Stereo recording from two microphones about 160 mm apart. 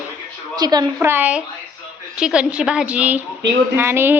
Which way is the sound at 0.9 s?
10° right (ahead or behind).